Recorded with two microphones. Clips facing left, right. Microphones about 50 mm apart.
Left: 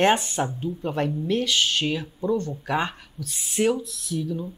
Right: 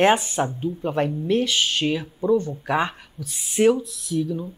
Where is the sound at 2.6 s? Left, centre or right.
Centre.